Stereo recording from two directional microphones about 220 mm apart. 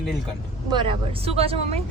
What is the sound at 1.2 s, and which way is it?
Speech, 25° right (ahead or behind).